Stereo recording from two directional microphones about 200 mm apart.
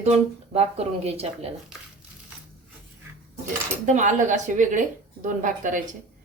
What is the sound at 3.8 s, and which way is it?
Speech, 35° right (ahead or behind).